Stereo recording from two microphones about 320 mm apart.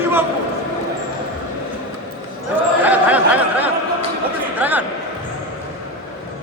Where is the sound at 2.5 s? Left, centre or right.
Centre.